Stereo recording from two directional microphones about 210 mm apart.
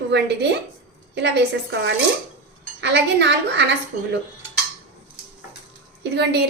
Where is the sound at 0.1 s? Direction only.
55° right (ahead or behind).